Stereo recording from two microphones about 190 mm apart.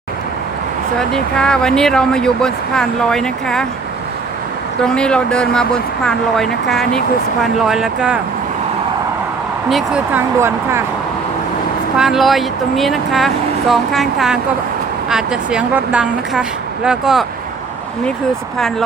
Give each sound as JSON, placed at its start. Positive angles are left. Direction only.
{"t": 0.9, "sound": "speech", "side_deg": 5}
{"t": 4.8, "sound": "speech", "side_deg": 5}
{"t": 9.6, "sound": "speech", "side_deg": 0}
{"t": 11.9, "sound": "speech", "side_deg": 0}